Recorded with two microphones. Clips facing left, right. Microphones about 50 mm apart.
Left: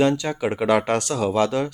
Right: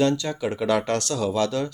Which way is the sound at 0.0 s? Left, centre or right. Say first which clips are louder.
Left 2 dB; left.